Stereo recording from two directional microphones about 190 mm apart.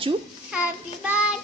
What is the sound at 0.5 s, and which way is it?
Child singing, 5° right (ahead or behind).